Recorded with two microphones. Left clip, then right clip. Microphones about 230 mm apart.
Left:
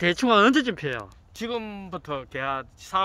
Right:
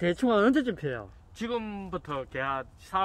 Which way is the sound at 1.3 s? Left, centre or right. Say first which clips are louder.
Left 2 dB; left.